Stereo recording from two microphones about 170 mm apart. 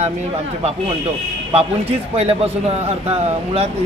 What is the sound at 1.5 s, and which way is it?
A man's voice, 35° right (ahead or behind).